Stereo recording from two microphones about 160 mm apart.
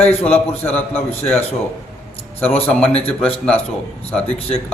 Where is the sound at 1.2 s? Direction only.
40° left (ahead or behind).